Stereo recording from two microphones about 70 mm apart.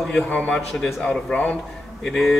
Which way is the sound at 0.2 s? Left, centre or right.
Left.